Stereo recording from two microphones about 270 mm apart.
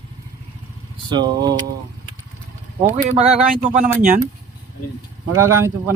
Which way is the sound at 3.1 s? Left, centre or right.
Right.